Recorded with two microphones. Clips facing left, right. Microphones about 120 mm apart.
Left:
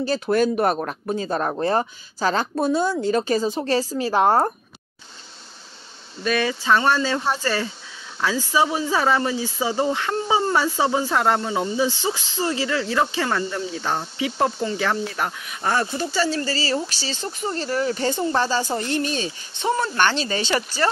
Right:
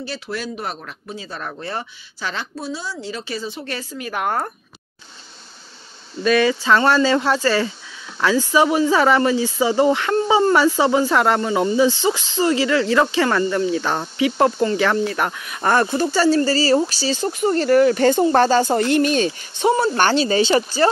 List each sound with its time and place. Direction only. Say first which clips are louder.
0.0 s a woman's voice: left 8 dB; 45° left (ahead or behind)
2.5 s a woman's voice: left 8 dB; 55° left (ahead or behind); by 4.5 s 30° left (ahead or behind)
6.2 s speech: right 5 dB; 90° right
8.2 s speech: right 4 dB; 75° right (ahead or behind); by 18.8 s 55° right (ahead or behind)
18.8 s speech: right 7 dB; 75° right (ahead or behind)
20.0 s speech: right 5 dB; 35° right (ahead or behind)